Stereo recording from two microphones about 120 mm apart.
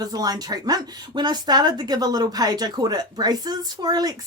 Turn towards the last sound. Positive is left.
turn(degrees=-35)  # may be behind; listen again after turning